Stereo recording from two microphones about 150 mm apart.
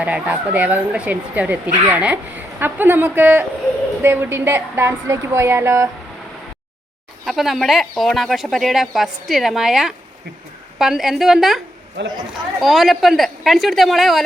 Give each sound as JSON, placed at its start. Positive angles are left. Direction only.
{"t": 0.0, "sound": "speech", "side_deg": -10}
{"t": 7.3, "sound": "speech", "side_deg": 0}